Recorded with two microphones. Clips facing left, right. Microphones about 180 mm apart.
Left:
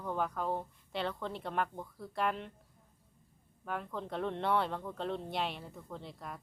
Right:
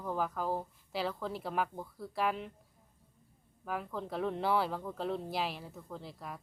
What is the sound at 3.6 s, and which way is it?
Speech, 5° right (ahead or behind).